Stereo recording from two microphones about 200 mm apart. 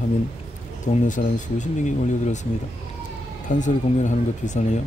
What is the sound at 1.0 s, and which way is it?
Speech, 40° left (ahead or behind).